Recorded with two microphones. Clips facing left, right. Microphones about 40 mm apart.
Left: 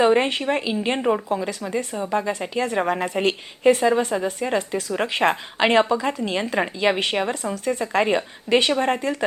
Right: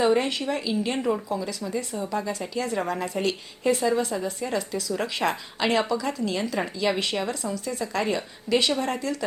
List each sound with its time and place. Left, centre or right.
0.0 s speech: left